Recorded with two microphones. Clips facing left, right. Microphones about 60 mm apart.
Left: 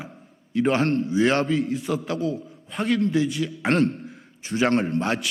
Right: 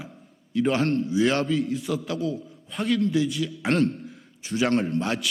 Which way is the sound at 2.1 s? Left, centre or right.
Left.